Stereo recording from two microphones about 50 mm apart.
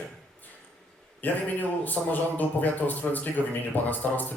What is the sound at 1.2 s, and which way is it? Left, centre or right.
Speech, left.